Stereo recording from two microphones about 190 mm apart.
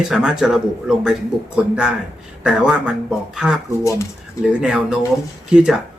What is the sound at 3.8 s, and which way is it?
Speech, 15° left (ahead or behind).